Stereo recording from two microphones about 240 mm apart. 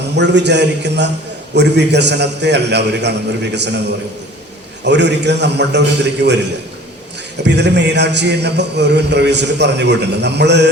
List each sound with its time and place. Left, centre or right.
0.2 s a man's voice: right
4.9 s a man's voice: right
7.4 s a man's voice: right